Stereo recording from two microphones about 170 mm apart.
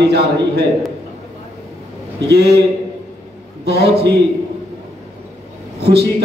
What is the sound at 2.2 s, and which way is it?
Speech, 70° right (ahead or behind).